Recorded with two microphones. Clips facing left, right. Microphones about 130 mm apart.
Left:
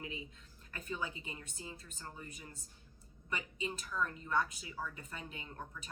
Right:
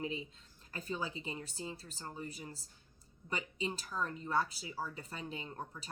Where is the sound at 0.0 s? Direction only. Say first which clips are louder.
Right 6 dB; 30° right (ahead or behind).